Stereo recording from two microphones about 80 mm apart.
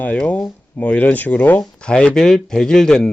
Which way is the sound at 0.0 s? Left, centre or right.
Centre.